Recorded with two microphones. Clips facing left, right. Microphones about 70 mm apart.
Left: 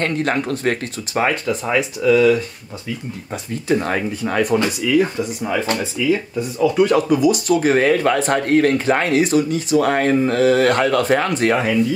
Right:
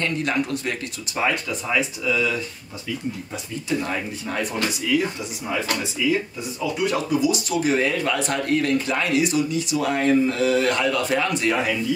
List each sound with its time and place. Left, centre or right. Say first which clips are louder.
0.0 s speech: left 4 dB; left
3.6 s speech: left 7 dB; left
6.8 s speech: left 6 dB; left
8.8 s speech: left 5 dB; left